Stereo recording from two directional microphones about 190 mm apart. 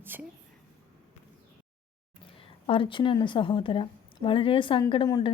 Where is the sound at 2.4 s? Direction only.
30° left (ahead or behind).